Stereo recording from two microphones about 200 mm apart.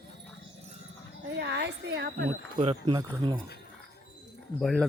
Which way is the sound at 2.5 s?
25° right (ahead or behind).